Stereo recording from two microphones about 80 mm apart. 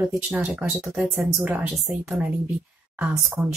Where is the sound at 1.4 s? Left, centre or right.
Centre.